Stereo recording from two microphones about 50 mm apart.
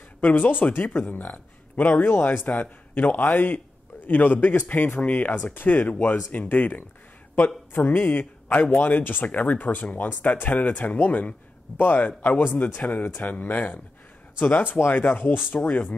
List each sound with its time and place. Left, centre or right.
0.2 s speech: left
7.7 s speech: left
8.1 s speech: left
15.6 s speech: left